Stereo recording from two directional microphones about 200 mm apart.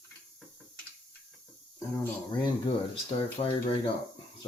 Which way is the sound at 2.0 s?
20° left (ahead or behind).